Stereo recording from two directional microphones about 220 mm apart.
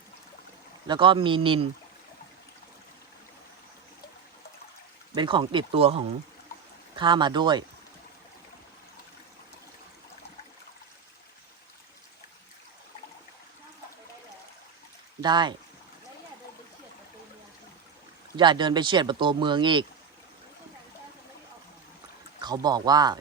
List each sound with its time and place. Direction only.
0.9 s speech: 20° right (ahead or behind)
5.1 s speech: 20° right (ahead or behind)
15.2 s speech: 20° right (ahead or behind)
18.3 s speech: 20° right (ahead or behind)
22.4 s speech: 20° right (ahead or behind)